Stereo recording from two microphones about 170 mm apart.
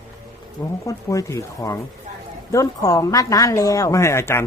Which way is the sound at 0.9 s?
20° left (ahead or behind).